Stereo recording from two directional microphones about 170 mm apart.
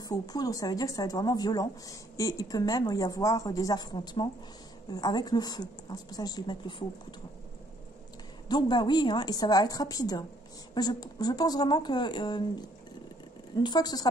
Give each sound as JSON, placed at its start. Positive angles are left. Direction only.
{"t": 0.1, "sound": "a woman's voice", "side_deg": 20}
{"t": 8.5, "sound": "a woman's voice", "side_deg": 25}